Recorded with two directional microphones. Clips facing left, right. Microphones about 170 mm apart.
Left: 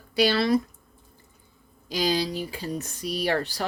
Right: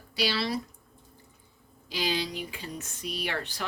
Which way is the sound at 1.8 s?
40° left (ahead or behind).